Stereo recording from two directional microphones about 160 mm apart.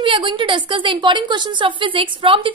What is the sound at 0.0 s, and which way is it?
A woman's voice, 30° right (ahead or behind).